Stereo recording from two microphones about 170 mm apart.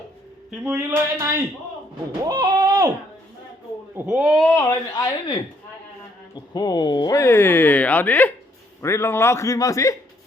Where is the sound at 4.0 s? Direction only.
5° right (ahead or behind).